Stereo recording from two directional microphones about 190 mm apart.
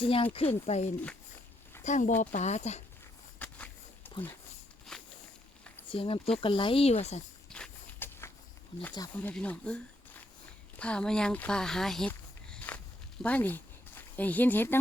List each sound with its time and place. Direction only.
0.0 s speech: 30° left (ahead or behind)
3.3 s a sound: 10° left (ahead or behind)
4.9 s walk: 5° left (ahead or behind)
5.9 s speech: 30° left (ahead or behind)
7.5 s walk: 10° left (ahead or behind)
9.0 s speech: 10° left (ahead or behind)